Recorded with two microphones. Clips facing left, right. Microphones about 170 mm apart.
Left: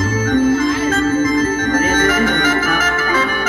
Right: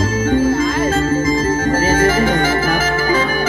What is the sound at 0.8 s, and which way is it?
Organ, 30° right (ahead or behind).